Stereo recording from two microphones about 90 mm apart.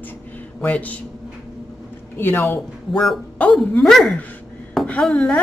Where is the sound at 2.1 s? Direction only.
25° left (ahead or behind).